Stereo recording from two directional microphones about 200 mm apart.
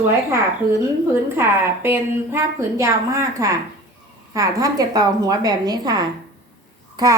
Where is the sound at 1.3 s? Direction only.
10° right (ahead or behind).